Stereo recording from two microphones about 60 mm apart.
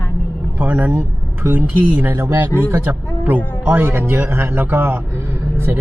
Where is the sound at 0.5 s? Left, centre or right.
Right.